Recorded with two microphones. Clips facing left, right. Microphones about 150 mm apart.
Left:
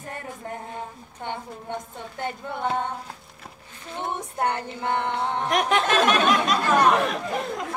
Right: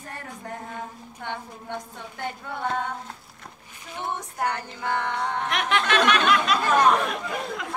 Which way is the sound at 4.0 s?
25° left (ahead or behind).